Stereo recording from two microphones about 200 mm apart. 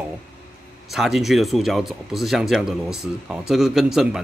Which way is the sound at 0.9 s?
Centre (ahead or behind).